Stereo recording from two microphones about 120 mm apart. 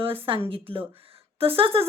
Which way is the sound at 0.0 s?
50° right (ahead or behind).